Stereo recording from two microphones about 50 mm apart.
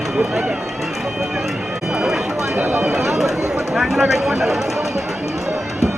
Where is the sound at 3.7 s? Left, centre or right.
Centre.